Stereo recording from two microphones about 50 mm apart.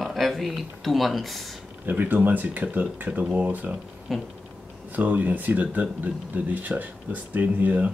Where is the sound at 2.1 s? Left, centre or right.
Right.